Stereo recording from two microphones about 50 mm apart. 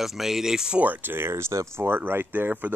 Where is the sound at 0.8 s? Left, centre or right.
Right.